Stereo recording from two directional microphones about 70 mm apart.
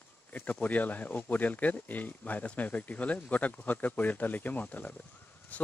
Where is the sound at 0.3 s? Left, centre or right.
Left.